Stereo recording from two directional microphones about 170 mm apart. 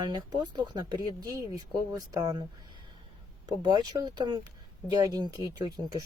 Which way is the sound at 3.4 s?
25° right (ahead or behind).